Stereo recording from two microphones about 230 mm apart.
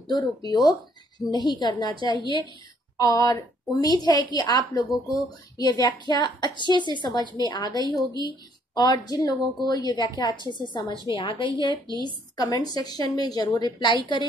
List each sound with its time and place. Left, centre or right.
0.1 s a woman's voice: centre